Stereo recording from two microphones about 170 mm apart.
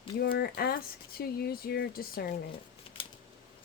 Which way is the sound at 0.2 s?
65° left (ahead or behind).